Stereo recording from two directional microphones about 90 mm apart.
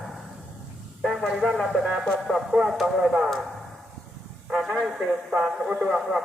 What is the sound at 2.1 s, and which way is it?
Speech, centre (ahead or behind).